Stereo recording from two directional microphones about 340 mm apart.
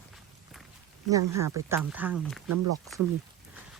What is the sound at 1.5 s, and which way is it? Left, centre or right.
Speech, centre.